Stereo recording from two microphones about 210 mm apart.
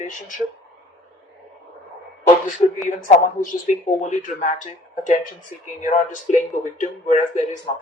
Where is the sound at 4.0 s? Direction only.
35° left (ahead or behind).